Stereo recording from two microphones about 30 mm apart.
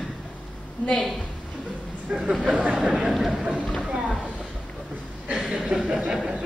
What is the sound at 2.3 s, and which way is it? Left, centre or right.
Speech, centre.